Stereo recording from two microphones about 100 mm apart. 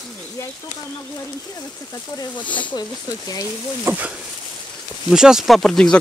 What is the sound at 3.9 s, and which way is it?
Speech, 15° right (ahead or behind).